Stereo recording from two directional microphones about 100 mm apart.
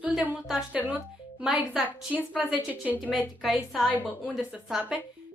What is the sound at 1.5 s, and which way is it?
Speech, 5° right (ahead or behind).